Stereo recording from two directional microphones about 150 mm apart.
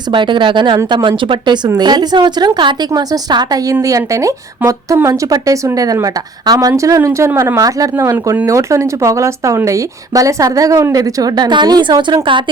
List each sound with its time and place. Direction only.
0.1 s a woman's voice: 30° right (ahead or behind)